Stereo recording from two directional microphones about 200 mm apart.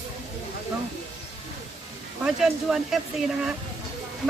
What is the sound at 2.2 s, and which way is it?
Speech, centre (ahead or behind).